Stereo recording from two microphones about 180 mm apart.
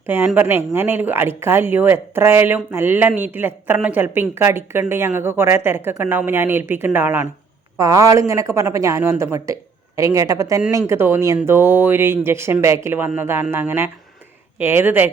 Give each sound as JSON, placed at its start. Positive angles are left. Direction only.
{"t": 0.0, "sound": "a woman's voice", "side_deg": -10}